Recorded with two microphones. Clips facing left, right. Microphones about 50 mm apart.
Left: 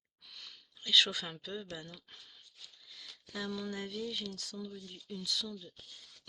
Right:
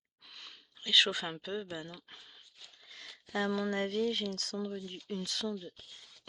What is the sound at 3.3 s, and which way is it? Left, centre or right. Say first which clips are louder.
Speech: right 7 dB; right.